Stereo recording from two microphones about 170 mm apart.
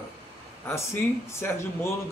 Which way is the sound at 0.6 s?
15° left (ahead or behind).